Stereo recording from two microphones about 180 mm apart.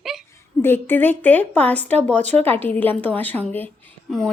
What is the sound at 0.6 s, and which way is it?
A woman's voice, 10° left (ahead or behind).